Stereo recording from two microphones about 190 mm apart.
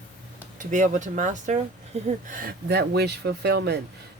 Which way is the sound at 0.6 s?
40° right (ahead or behind).